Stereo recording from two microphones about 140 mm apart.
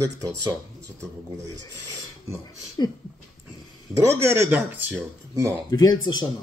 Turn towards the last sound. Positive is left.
turn(degrees=30)  # may be behind; listen again after turning